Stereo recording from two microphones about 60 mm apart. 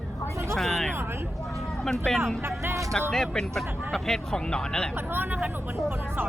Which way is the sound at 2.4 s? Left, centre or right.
Right.